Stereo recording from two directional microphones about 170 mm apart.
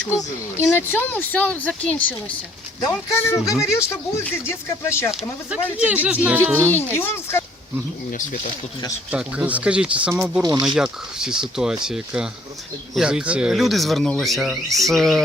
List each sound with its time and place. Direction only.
0.5 s speech: 15° left (ahead or behind)
5.7 s speech: 10° right (ahead or behind)
6.9 s speech: 15° left (ahead or behind)
9.1 s speech: 10° right (ahead or behind)